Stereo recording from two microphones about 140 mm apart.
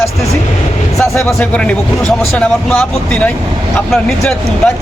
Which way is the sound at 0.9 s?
Centre (ahead or behind).